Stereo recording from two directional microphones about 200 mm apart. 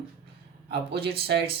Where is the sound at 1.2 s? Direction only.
55° right (ahead or behind).